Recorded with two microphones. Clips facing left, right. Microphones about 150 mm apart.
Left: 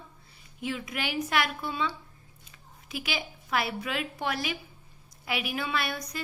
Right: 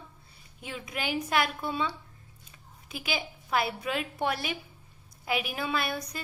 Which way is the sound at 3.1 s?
30° right (ahead or behind).